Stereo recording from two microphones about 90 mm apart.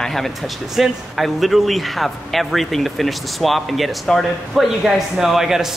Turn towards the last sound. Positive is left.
turn(degrees=-5)  # may be behind; listen again after turning